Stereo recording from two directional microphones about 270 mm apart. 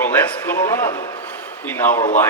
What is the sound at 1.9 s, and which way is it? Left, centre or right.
Speech, left.